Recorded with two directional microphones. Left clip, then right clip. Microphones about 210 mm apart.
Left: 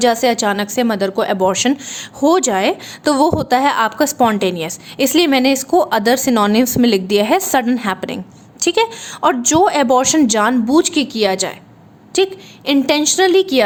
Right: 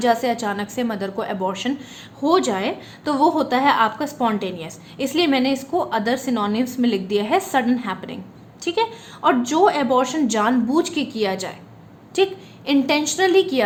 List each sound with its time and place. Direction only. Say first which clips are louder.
0.0 s a woman's voice: left 6 dB; 40° left (ahead or behind)